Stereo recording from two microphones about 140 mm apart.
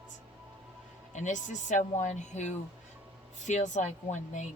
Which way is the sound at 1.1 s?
60° left (ahead or behind).